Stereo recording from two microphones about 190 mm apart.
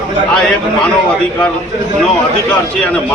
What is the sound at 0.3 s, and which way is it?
Speech, 5° left (ahead or behind).